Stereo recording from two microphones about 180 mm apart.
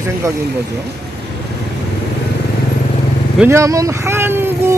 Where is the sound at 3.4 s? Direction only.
15° right (ahead or behind).